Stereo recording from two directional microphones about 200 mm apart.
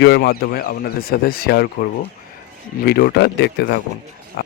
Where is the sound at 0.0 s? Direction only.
55° left (ahead or behind).